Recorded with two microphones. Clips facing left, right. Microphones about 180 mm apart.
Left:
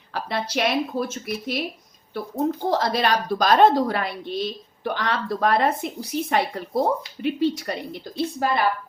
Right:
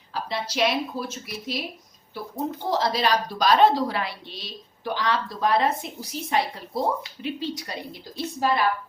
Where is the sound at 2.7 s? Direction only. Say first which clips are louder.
Right 1 dB; 55° left (ahead or behind).